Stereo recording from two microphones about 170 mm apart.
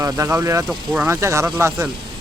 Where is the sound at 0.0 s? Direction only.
20° right (ahead or behind).